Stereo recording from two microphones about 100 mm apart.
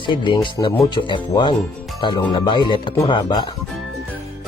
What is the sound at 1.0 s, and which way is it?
Speech, 60° left (ahead or behind).